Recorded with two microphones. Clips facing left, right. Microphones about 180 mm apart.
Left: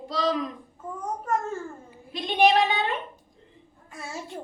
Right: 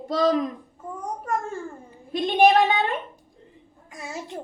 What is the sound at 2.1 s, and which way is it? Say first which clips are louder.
Speech: right 4 dB; 50° right (ahead or behind).